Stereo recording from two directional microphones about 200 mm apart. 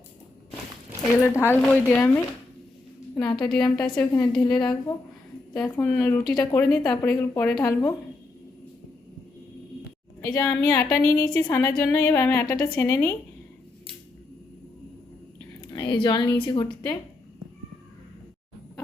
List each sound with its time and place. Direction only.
1.1 s a woman's voice: 15° left (ahead or behind)
5.6 s a woman's voice: 10° left (ahead or behind)
10.2 s a woman's voice: 5° left (ahead or behind)
15.7 s a woman's voice: 20° left (ahead or behind)